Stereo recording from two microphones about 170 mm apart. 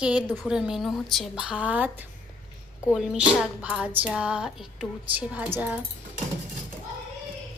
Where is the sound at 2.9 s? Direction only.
5° right (ahead or behind).